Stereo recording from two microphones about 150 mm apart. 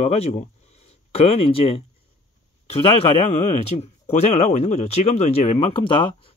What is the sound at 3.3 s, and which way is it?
Speech, 40° left (ahead or behind).